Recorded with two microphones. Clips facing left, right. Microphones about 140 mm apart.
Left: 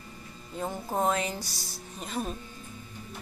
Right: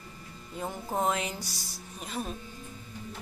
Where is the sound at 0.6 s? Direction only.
10° left (ahead or behind).